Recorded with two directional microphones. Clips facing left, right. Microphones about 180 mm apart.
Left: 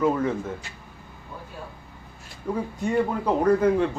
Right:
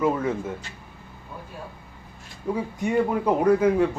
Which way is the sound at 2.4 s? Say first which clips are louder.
Right 1 dB; 10° right (ahead or behind).